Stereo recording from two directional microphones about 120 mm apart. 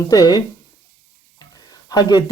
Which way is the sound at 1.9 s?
35° left (ahead or behind).